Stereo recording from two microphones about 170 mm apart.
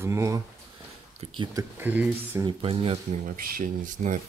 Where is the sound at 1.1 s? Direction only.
30° right (ahead or behind).